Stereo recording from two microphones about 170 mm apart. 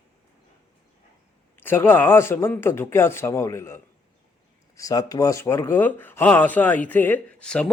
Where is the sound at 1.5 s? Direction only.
10° left (ahead or behind).